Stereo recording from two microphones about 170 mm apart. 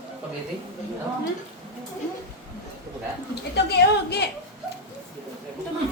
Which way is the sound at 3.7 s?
70° left (ahead or behind).